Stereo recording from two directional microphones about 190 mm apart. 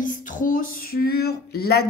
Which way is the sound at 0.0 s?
45° left (ahead or behind).